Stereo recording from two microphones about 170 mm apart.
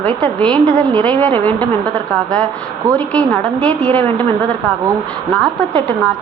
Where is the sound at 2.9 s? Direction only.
5° left (ahead or behind).